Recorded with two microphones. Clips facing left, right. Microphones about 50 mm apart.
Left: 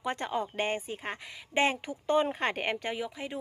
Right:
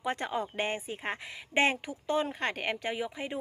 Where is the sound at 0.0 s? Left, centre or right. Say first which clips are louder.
Even; centre.